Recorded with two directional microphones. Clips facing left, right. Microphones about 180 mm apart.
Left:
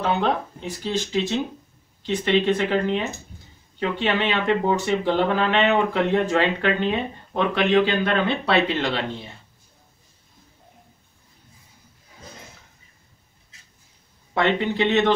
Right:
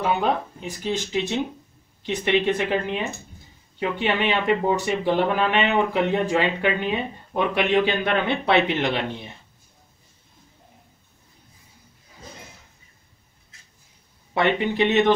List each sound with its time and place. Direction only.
0.0 s speech: 10° right (ahead or behind)
14.3 s speech: 15° right (ahead or behind)